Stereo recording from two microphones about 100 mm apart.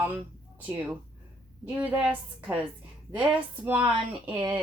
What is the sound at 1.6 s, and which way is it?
Speech, 15° right (ahead or behind).